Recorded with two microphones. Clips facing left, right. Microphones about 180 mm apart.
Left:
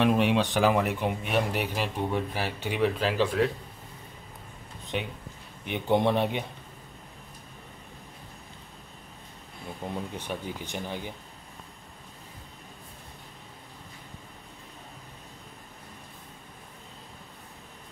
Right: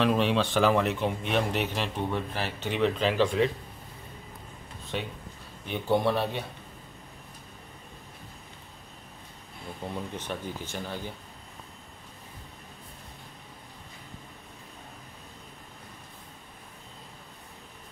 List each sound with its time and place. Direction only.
0.0 s speech: 15° left (ahead or behind)
4.9 s speech: 15° left (ahead or behind)
9.8 s speech: 10° left (ahead or behind)